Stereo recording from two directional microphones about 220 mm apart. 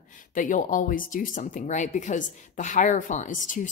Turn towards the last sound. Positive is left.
turn(degrees=35)  # may be behind; listen again after turning